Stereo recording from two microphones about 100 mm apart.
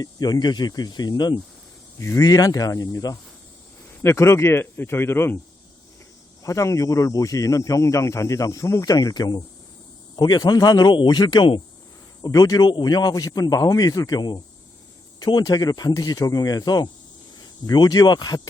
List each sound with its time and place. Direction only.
0.0 s speech: 45° left (ahead or behind)
2.0 s speech: 30° left (ahead or behind)
4.0 s speech: 30° left (ahead or behind)
6.4 s speech: 30° left (ahead or behind); by 11.6 s 50° left (ahead or behind)
12.2 s speech: 40° left (ahead or behind)